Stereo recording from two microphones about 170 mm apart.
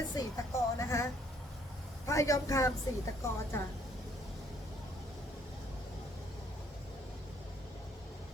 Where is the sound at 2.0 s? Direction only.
20° left (ahead or behind).